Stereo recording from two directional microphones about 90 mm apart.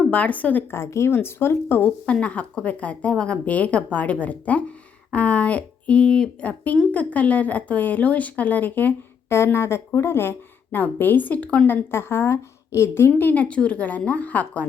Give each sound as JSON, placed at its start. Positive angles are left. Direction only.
{"t": 0.0, "sound": "a woman's voice", "side_deg": 15}
{"t": 0.8, "sound": "a woman's voice", "side_deg": 30}